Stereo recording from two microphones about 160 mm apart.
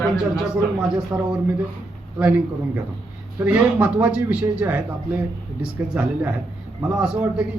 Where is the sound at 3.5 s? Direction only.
10° right (ahead or behind).